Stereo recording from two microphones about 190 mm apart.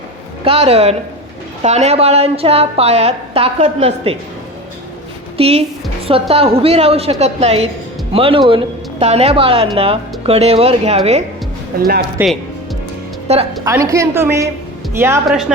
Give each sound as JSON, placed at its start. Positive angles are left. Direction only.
{"t": 0.4, "sound": "a woman's voice", "side_deg": -30}
{"t": 5.4, "sound": "a woman's voice", "side_deg": -30}
{"t": 11.8, "sound": "speech", "side_deg": -55}
{"t": 13.2, "sound": "a woman's voice", "side_deg": -35}
{"t": 13.7, "sound": "a woman's voice", "side_deg": -15}
{"t": 15.3, "sound": "a woman's voice", "side_deg": 0}